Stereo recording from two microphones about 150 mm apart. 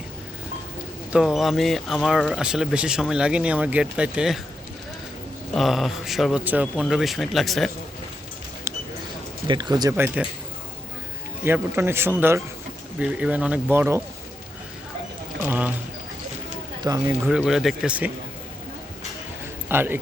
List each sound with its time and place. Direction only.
1.1 s speech: centre (ahead or behind)
5.5 s speech: centre (ahead or behind)
8.7 s a sound: 15° right (ahead or behind)
9.5 s speech: 30° right (ahead or behind)
11.4 s speech: 15° right (ahead or behind)
15.4 s speech: 10° right (ahead or behind)
16.9 s speech: 25° right (ahead or behind)
17.2 s speech: 5° right (ahead or behind)
19.6 s a man's voice: 15° right (ahead or behind)